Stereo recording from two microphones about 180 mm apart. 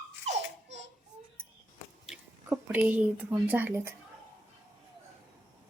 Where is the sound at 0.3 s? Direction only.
40° right (ahead or behind).